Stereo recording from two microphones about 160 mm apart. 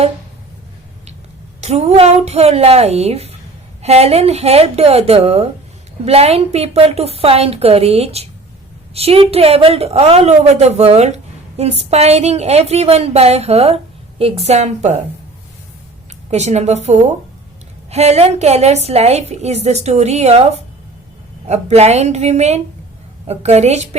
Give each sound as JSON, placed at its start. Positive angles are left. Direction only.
{"t": 1.6, "sound": "a woman's voice", "side_deg": -40}
{"t": 16.3, "sound": "a woman's voice", "side_deg": -45}